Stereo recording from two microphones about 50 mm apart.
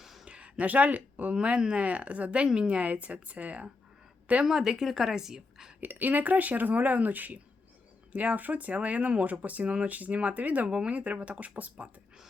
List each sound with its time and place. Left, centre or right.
0.0 s a sound: centre
0.3 s speech: right
1.4 s speech: centre
4.4 s a woman's voice: centre
5.8 s speech: right
10.7 s speech: right